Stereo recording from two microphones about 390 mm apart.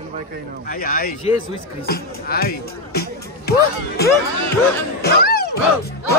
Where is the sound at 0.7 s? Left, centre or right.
Left.